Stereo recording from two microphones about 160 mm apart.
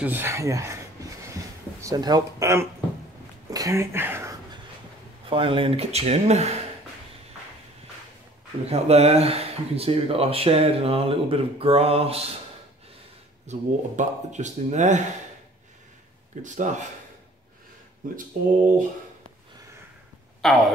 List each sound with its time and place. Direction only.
0.0 s speech: 15° right (ahead or behind)
1.3 s a sound: 20° right (ahead or behind)
5.3 s speech: 35° right (ahead or behind)
8.6 s speech: 40° right (ahead or behind)
13.5 s speech: 45° right (ahead or behind)
16.4 s speech: 50° right (ahead or behind)
18.0 s speech: 55° right (ahead or behind)
20.4 s speech: centre (ahead or behind)